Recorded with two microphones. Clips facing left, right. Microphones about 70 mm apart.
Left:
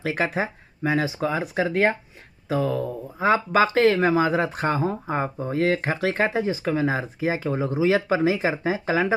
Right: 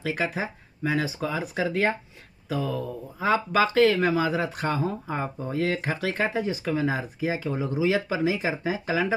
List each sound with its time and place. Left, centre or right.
0.0 s speech: left